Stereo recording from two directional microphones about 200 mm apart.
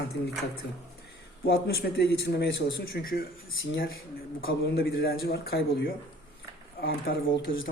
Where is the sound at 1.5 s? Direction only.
50° left (ahead or behind).